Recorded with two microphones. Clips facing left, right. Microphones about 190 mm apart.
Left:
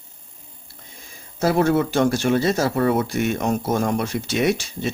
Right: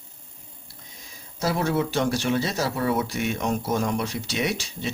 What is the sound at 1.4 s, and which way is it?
Speech, 55° left (ahead or behind).